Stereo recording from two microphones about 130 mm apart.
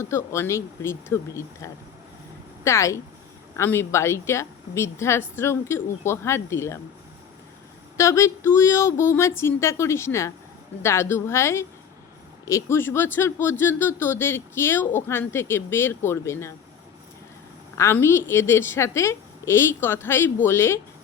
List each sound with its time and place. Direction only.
0.0 s speech: 20° left (ahead or behind)
7.9 s speech: 20° left (ahead or behind)
17.7 s speech: 20° left (ahead or behind)